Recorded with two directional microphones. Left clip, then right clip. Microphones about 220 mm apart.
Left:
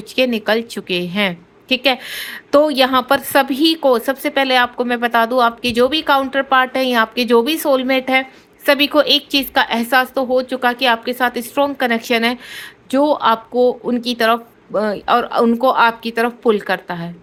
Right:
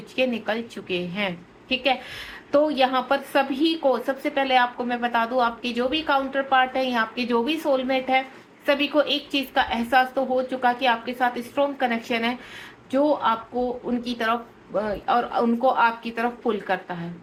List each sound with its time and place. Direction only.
0.2 s a woman's voice: 50° left (ahead or behind)